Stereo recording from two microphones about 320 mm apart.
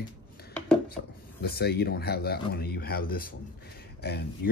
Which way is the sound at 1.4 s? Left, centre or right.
Left.